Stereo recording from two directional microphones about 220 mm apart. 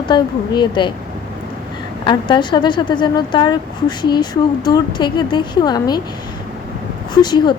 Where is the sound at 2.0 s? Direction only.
20° left (ahead or behind).